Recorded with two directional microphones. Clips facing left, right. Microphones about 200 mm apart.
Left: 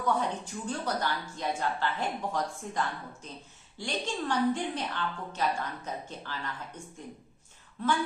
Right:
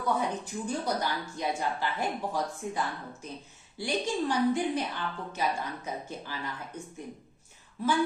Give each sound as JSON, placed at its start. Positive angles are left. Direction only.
{"t": 0.2, "sound": "a woman's voice", "side_deg": -10}
{"t": 7.8, "sound": "a woman's voice", "side_deg": -5}